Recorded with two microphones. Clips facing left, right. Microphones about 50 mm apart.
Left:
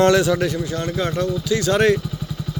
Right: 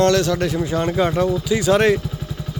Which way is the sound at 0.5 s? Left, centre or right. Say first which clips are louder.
Right 4 dB; centre.